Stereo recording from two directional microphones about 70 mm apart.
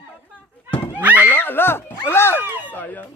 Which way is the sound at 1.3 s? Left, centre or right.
Left.